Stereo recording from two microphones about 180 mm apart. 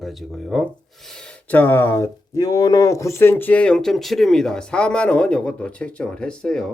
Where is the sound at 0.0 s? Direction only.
Centre (ahead or behind).